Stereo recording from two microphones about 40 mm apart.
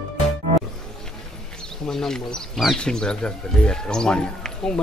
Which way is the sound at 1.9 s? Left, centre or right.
Centre.